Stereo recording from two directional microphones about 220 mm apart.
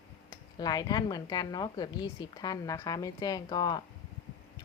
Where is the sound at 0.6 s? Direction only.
15° left (ahead or behind).